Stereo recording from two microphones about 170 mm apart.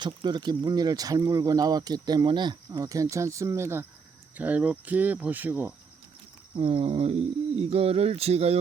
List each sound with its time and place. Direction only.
0.0 s speech: 25° right (ahead or behind); by 5.7 s 10° right (ahead or behind)
6.6 s speech: 30° right (ahead or behind)